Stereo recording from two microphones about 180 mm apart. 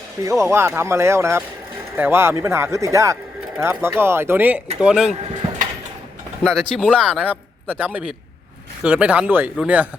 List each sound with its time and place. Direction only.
0.2 s speech: 15° right (ahead or behind)
6.4 s speech: 5° right (ahead or behind)